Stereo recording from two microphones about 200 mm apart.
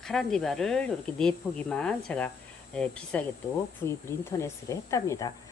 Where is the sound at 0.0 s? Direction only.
Centre (ahead or behind).